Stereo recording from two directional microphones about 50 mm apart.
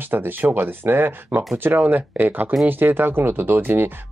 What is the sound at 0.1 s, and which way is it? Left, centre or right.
Speech, right.